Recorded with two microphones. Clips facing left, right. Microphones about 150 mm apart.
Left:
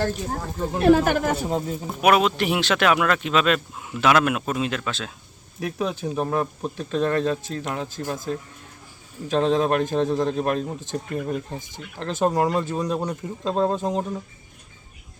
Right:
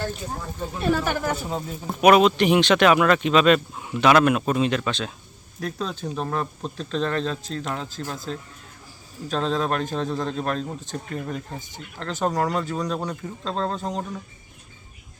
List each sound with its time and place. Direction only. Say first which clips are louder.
0.5 s speech: left 7 dB; 75° left (ahead or behind); by 1.6 s 45° left (ahead or behind)
2.0 s speech: right 3 dB; centre (ahead or behind)
5.5 s speech: left 3 dB; 10° left (ahead or behind)
9.4 s speech: left 4 dB; 15° left (ahead or behind)
12.3 s speech: left 2 dB; 5° left (ahead or behind)
12.6 s speech: left 2 dB; 20° left (ahead or behind)